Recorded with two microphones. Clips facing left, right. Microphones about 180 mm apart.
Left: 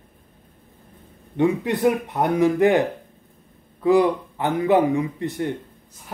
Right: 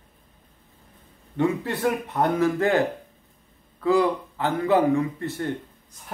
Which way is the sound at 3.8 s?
20° left (ahead or behind).